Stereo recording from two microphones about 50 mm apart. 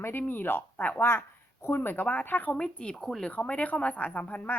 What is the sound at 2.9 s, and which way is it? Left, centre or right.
Speech, centre.